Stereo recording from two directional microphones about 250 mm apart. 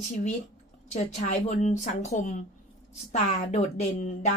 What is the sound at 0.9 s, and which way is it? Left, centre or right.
Speech, left.